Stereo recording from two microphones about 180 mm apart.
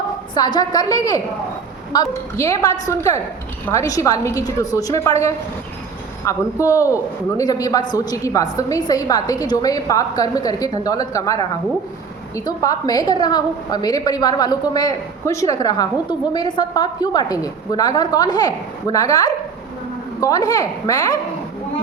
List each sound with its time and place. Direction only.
0.3 s a woman's voice: 25° left (ahead or behind)
6.2 s a woman's voice: 15° left (ahead or behind)
12.5 s a woman's voice: 20° left (ahead or behind)